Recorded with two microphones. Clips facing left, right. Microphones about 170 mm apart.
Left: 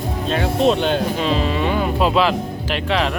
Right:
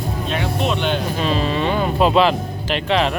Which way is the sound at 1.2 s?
15° left (ahead or behind).